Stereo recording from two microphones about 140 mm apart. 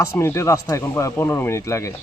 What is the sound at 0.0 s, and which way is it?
Speech, 20° left (ahead or behind).